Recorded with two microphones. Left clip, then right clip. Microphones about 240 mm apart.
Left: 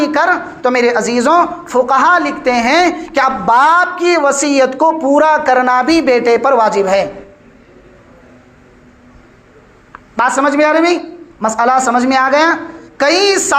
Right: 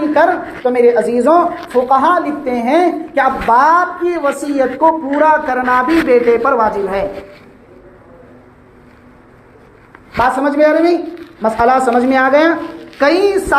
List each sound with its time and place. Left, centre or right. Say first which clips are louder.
0.0 s a woman's voice: even; left
10.2 s a woman's voice: left 1 dB; left